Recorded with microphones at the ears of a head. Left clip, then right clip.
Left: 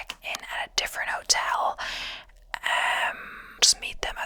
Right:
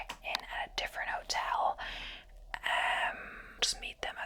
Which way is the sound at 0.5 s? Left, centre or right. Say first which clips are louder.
Left 8 dB; left.